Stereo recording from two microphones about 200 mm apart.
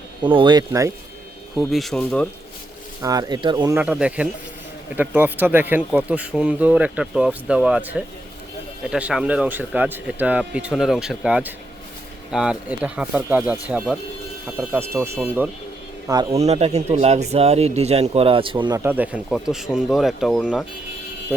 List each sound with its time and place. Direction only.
0.2 s speech: 25° right (ahead or behind)
1.7 s speech: centre (ahead or behind)
3.0 s speech: 20° right (ahead or behind)
16.3 s speech: 30° right (ahead or behind)
18.8 s speech: 10° right (ahead or behind)